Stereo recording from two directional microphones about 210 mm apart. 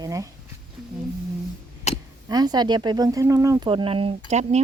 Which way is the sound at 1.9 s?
30° left (ahead or behind).